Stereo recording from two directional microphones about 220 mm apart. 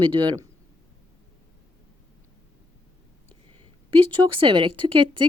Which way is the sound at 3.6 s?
25° right (ahead or behind).